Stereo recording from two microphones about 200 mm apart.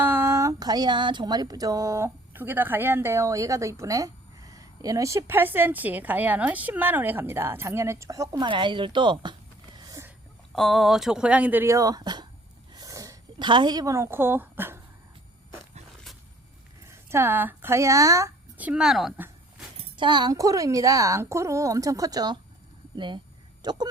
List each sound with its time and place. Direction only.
0.0 s speech: 10° right (ahead or behind)
9.7 s a sound: 15° right (ahead or behind)
10.5 s speech: centre (ahead or behind); by 12.3 s 20° right (ahead or behind)
12.7 s a sound: 15° right (ahead or behind)
16.9 s a woman's voice: 10° right (ahead or behind)
19.7 s speech: 25° right (ahead or behind)